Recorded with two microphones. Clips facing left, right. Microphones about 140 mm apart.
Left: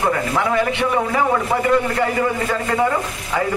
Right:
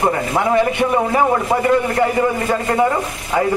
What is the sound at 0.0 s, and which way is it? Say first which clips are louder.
A man's voice: right 2 dB; 20° right (ahead or behind).